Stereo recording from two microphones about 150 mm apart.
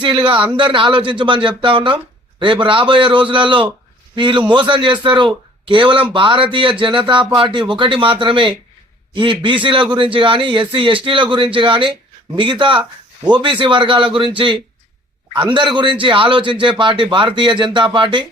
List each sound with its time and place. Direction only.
0.0 s a man's voice: 35° right (ahead or behind)